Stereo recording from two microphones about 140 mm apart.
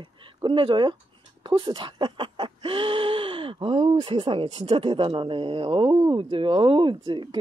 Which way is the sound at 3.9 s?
40° right (ahead or behind).